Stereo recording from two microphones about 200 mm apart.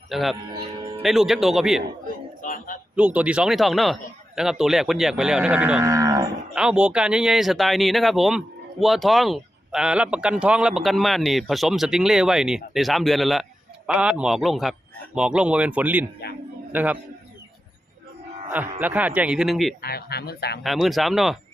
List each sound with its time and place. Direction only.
0.1 s speech: centre (ahead or behind)
0.5 s music: 25° right (ahead or behind)
1.0 s speech: centre (ahead or behind)
2.4 s a sound: 40° left (ahead or behind)
2.9 s speech: 5° right (ahead or behind)
6.5 s a man's voice: 5° right (ahead or behind)
18.5 s a man's voice: 10° right (ahead or behind)
19.8 s speech: 50° left (ahead or behind)
20.7 s speech: centre (ahead or behind)